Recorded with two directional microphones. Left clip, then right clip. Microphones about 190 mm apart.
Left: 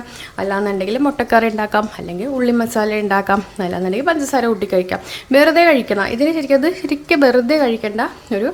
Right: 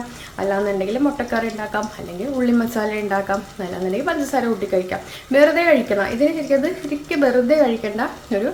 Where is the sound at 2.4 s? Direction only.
40° left (ahead or behind).